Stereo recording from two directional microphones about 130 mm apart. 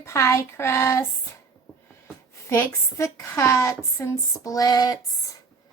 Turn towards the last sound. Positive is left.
turn(degrees=30)  # may be behind; listen again after turning